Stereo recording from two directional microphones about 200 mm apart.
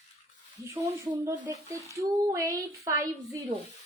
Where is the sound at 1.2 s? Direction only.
15° right (ahead or behind).